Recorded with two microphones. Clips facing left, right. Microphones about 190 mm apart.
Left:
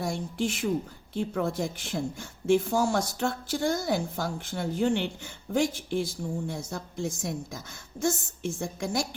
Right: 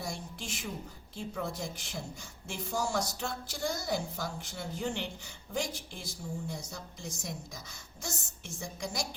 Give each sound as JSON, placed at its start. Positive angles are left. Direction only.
{"t": 0.0, "sound": "speech", "side_deg": 60}